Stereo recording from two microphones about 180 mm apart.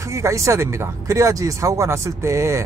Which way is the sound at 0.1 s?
15° right (ahead or behind).